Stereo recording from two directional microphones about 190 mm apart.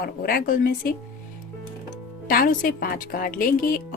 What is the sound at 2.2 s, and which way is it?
A woman's voice, 50° left (ahead or behind).